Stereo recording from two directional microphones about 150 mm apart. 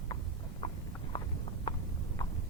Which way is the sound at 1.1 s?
30° left (ahead or behind).